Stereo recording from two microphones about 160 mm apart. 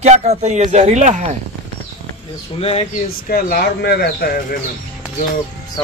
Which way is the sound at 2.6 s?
35° left (ahead or behind).